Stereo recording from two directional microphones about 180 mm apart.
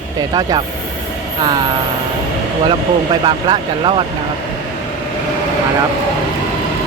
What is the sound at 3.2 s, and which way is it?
Speech, 30° right (ahead or behind).